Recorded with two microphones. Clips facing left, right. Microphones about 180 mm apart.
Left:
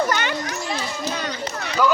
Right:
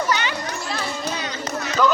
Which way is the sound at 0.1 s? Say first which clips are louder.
Even; 50° left (ahead or behind).